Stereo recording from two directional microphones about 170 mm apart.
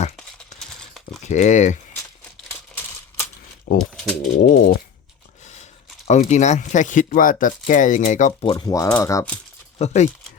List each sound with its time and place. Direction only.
1.2 s speech: 45° left (ahead or behind)
3.8 s typewriter: 5° left (ahead or behind)
4.4 s a sound: 50° left (ahead or behind)
6.1 s speech: 45° left (ahead or behind)
8.5 s speech: 20° left (ahead or behind)
9.7 s speech: 40° left (ahead or behind)